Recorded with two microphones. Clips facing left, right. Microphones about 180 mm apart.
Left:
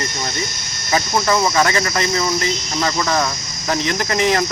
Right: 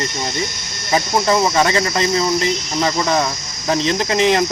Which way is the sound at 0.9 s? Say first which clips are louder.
Right 2 dB; 20° right (ahead or behind).